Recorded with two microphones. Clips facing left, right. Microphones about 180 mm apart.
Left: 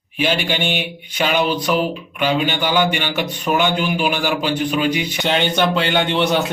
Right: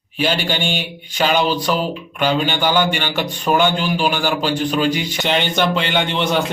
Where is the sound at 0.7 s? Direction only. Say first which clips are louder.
Even; 35° right (ahead or behind).